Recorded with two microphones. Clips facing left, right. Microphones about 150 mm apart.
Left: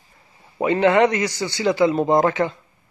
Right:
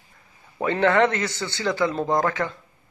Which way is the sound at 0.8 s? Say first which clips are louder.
Left 3 dB; 20° left (ahead or behind).